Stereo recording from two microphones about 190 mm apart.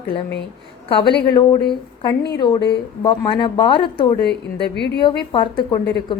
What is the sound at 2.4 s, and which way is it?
A woman's voice, 25° left (ahead or behind).